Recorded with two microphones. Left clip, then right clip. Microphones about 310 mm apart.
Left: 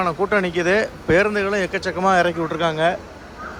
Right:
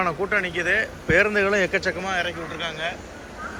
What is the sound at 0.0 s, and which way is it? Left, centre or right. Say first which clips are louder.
Speech: left 3 dB; centre.